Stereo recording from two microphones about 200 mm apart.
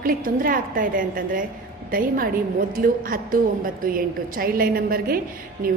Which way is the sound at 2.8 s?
45° right (ahead or behind).